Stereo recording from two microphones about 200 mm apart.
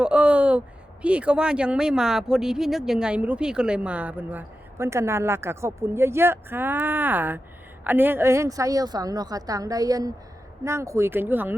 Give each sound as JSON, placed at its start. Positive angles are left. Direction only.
{"t": 0.0, "sound": "speech", "side_deg": -5}